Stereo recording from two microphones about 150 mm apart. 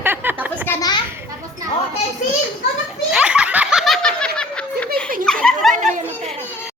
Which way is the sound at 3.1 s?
5° right (ahead or behind).